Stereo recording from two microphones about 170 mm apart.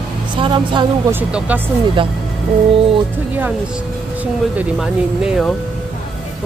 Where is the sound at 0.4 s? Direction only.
30° right (ahead or behind).